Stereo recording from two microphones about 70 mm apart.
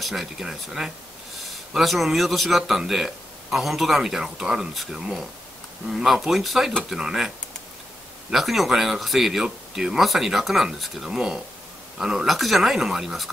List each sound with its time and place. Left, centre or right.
0.0 s speech: centre